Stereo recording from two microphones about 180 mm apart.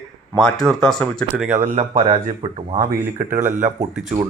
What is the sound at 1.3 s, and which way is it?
Speech, 10° right (ahead or behind).